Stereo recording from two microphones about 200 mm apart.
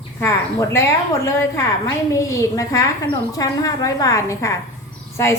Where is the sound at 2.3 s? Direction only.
15° left (ahead or behind).